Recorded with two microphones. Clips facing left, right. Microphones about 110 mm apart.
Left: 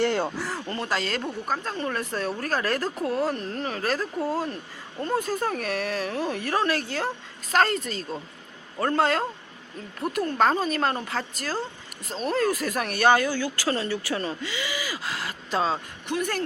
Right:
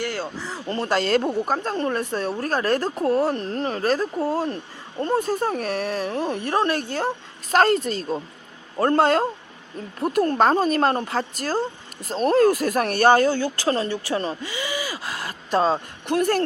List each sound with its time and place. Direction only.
0.0 s speech: 20° left (ahead or behind)
0.4 s a sound: centre (ahead or behind)
0.7 s a woman's voice: 35° right (ahead or behind)
1.9 s speech: 25° right (ahead or behind)
7.5 s a woman's voice: 40° right (ahead or behind)
12.2 s speech: 45° right (ahead or behind)